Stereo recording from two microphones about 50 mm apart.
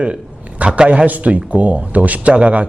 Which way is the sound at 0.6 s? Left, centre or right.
Right.